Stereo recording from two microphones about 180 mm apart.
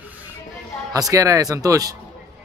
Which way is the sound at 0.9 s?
20° right (ahead or behind).